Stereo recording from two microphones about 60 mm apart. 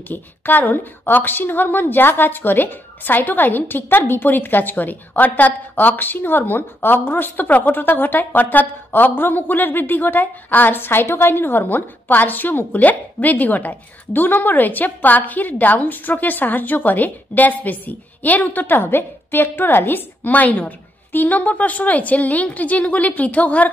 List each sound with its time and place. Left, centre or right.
0.1 s a woman's voice: left